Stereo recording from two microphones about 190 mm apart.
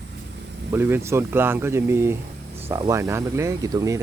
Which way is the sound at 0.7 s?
10° right (ahead or behind).